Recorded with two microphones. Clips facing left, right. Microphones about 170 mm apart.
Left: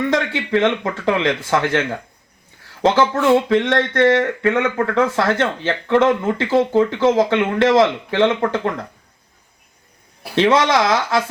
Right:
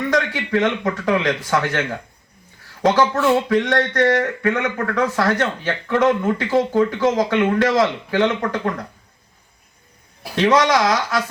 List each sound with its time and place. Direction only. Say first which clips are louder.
0.1 s speech: left 1 dB; 25° left (ahead or behind)
2.8 s speech: left 1 dB; 25° left (ahead or behind)
10.3 s speech: left 1 dB; 25° left (ahead or behind)